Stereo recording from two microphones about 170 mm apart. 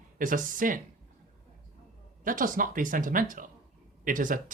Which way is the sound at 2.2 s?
55° right (ahead or behind).